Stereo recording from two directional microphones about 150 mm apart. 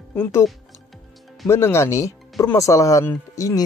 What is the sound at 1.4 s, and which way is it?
Speech, 15° left (ahead or behind).